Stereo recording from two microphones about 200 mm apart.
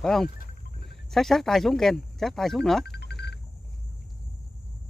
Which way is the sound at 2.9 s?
55° left (ahead or behind).